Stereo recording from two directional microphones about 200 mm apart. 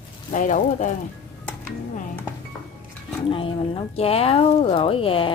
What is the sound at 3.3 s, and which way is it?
Speech, 25° left (ahead or behind).